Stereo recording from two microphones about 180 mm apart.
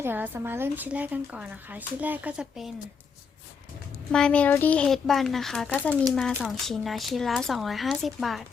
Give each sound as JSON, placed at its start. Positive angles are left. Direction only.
{"t": 0.0, "sound": "speech", "side_deg": -10}
{"t": 4.1, "sound": "speech", "side_deg": 5}